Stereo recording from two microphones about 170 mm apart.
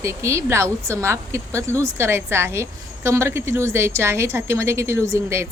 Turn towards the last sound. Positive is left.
turn(degrees=-15)  # may be behind; listen again after turning